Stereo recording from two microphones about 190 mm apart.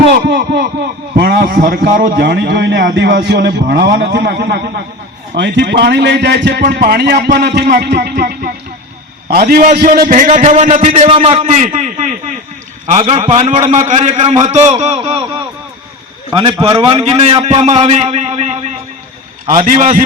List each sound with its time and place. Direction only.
0.1 s a man's voice: 60° right (ahead or behind)
5.4 s a man's voice: 65° right (ahead or behind); by 15.2 s 30° right (ahead or behind)
16.3 s a man's voice: 25° right (ahead or behind)
19.6 s speech: 45° right (ahead or behind)